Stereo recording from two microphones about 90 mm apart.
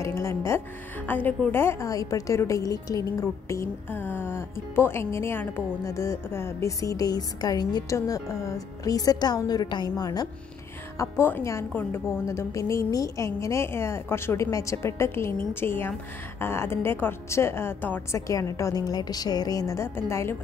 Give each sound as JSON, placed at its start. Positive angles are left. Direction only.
{"t": 0.0, "sound": "a woman's voice", "side_deg": 30}
{"t": 1.0, "sound": "speech", "side_deg": 20}
{"t": 1.9, "sound": "a woman's voice", "side_deg": 40}
{"t": 3.9, "sound": "speech", "side_deg": 25}
{"t": 7.9, "sound": "a woman's voice", "side_deg": 35}
{"t": 11.0, "sound": "a woman's voice", "side_deg": 25}
{"t": 18.1, "sound": "a woman's voice", "side_deg": 35}
{"t": 20.0, "sound": "speech", "side_deg": 30}